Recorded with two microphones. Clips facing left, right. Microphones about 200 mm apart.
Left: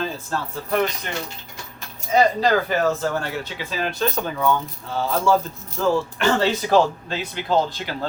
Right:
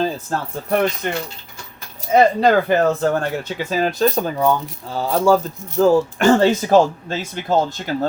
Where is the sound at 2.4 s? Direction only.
60° right (ahead or behind).